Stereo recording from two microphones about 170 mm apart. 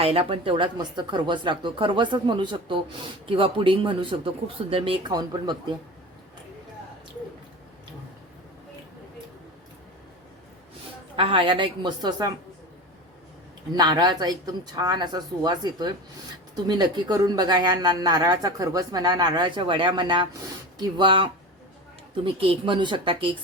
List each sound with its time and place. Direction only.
0.0 s speech: 35° right (ahead or behind)
11.2 s speech: 30° right (ahead or behind)
13.7 s speech: 25° right (ahead or behind)